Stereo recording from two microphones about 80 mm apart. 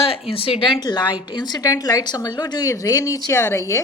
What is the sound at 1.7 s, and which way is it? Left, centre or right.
Speech, left.